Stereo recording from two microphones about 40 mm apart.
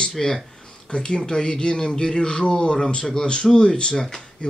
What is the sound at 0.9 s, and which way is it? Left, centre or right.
Speech, left.